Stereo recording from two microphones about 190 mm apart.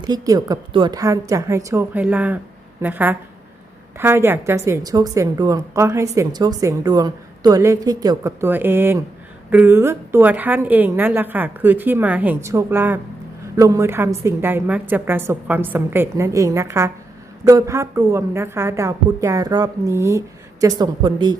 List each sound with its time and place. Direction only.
0.0 s a woman's voice: 20° right (ahead or behind)